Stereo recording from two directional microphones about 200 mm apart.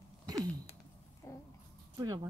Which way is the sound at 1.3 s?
15° left (ahead or behind).